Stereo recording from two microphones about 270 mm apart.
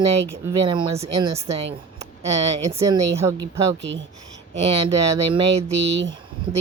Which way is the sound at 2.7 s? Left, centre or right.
Right.